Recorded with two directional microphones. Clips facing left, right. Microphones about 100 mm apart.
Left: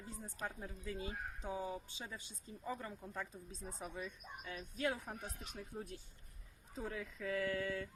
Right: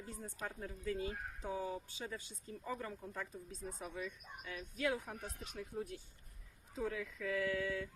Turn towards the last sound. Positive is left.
turn(degrees=45)  # may be behind; listen again after turning